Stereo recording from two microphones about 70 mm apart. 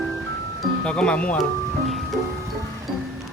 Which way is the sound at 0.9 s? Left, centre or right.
Centre.